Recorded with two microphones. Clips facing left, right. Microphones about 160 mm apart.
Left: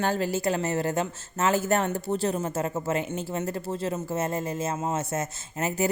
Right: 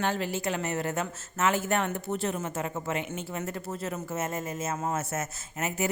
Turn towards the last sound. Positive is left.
turn(degrees=35)  # may be behind; listen again after turning